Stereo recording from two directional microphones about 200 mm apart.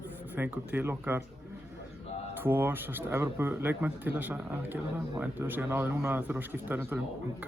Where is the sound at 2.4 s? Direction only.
10° right (ahead or behind).